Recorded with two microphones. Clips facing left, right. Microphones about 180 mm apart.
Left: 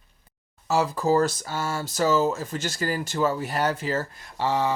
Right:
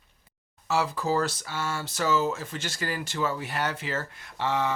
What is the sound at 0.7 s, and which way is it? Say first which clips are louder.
Speech: left 4 dB; 40° left (ahead or behind).